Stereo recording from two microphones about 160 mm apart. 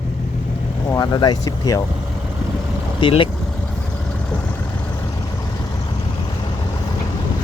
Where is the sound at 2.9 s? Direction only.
30° left (ahead or behind).